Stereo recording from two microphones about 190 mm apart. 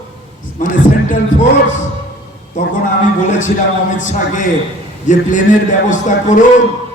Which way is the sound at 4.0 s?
40° left (ahead or behind).